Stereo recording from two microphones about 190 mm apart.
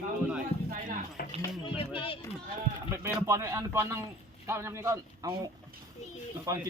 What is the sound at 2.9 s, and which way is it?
A man's voice, 15° right (ahead or behind).